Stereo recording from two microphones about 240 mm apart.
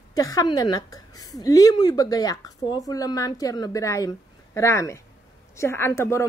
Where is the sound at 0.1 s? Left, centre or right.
Centre.